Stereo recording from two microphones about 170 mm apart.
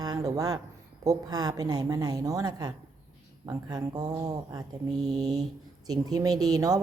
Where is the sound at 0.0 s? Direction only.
20° right (ahead or behind).